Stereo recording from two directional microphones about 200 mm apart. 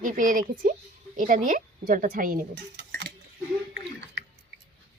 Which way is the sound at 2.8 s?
50° right (ahead or behind).